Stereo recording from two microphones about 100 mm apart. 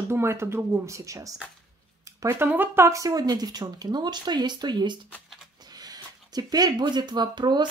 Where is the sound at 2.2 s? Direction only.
20° right (ahead or behind); by 4.9 s 50° right (ahead or behind).